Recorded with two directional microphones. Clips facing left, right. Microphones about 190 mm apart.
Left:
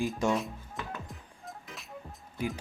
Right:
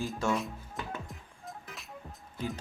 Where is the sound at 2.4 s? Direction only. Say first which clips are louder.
Left 2 dB; 10° left (ahead or behind).